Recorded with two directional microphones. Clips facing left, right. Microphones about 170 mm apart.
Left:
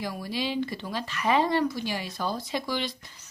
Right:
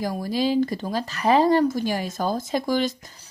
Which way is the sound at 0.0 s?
40° right (ahead or behind).